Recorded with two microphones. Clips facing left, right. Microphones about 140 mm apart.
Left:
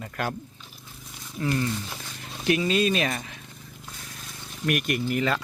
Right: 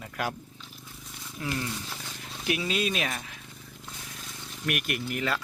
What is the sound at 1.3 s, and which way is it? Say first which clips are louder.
Speech: left 6 dB; 5° right (ahead or behind).